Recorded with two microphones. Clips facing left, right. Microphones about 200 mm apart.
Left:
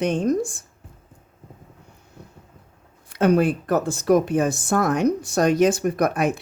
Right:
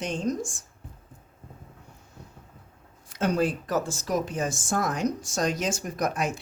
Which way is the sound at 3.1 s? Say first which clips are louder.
Left 7 dB; 60° left (ahead or behind).